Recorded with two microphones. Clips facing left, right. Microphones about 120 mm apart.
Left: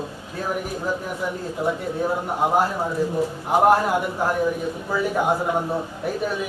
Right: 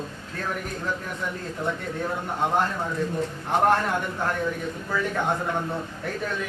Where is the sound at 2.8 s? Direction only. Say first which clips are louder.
Left 4 dB; 30° left (ahead or behind).